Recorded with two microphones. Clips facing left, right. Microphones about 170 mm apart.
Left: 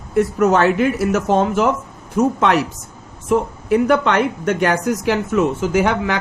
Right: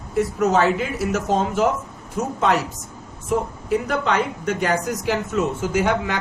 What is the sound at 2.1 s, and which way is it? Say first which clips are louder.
Speech: left 5 dB; 70° left (ahead or behind).